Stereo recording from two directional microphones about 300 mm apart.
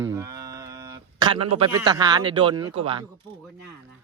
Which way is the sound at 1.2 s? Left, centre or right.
Centre.